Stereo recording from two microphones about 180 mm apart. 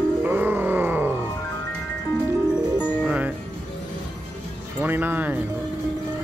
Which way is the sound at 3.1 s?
10° right (ahead or behind).